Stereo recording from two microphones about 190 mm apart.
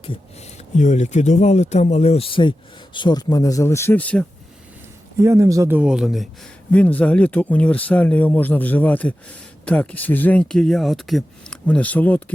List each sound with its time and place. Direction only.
0.8 s speech: 40° left (ahead or behind); by 4.3 s 10° left (ahead or behind)
5.2 s speech: 15° right (ahead or behind)
6.7 s speech: 10° left (ahead or behind)